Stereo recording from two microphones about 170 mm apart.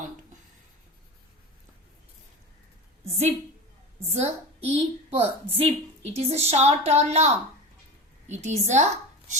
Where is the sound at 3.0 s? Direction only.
40° right (ahead or behind).